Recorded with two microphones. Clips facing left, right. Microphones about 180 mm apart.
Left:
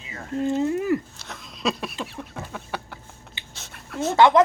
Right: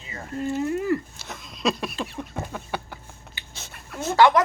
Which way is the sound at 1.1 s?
5° right (ahead or behind).